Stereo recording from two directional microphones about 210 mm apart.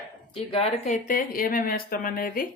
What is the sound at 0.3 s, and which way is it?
Speech, 30° left (ahead or behind).